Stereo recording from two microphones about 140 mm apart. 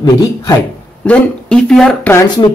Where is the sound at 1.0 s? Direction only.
5° left (ahead or behind).